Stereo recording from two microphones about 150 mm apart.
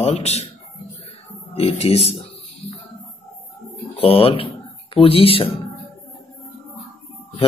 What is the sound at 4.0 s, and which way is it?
Speech, 40° left (ahead or behind).